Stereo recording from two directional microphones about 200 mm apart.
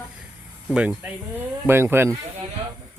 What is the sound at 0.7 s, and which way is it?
Speech, 5° right (ahead or behind).